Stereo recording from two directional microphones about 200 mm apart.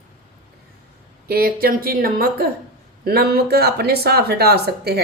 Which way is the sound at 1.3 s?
45° right (ahead or behind).